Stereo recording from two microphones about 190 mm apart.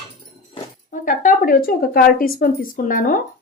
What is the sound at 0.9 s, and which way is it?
Speech, 45° left (ahead or behind).